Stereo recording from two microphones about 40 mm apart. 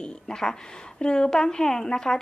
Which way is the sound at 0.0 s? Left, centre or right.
Centre.